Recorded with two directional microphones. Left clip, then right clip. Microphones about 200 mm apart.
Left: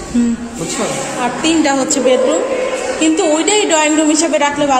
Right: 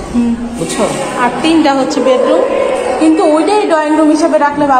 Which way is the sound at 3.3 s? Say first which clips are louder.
Right 3 dB; 15° left (ahead or behind).